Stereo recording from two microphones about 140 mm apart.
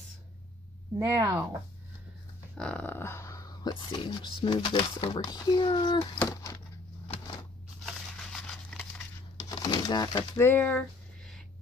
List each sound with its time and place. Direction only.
0.9 s speech: 20° right (ahead or behind)
2.5 s speech: 5° left (ahead or behind); by 6.5 s 25° left (ahead or behind)
7.8 s a sound: 5° left (ahead or behind)
9.4 s pigeon: 25° left (ahead or behind)
10.3 s speech: 15° left (ahead or behind)